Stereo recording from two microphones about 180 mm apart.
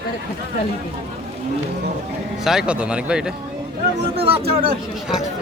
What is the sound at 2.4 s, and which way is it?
Speech, centre (ahead or behind).